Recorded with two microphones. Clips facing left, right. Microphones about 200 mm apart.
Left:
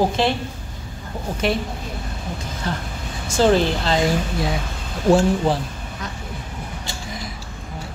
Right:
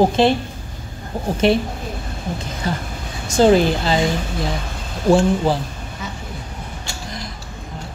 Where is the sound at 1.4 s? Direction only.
25° right (ahead or behind).